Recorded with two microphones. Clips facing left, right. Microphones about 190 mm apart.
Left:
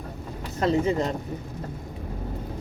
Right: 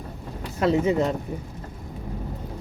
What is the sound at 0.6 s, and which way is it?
Speech, 5° right (ahead or behind).